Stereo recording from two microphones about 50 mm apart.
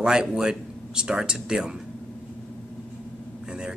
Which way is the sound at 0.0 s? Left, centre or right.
Centre.